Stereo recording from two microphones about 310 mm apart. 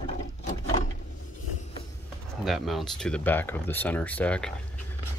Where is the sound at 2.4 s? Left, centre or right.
Centre.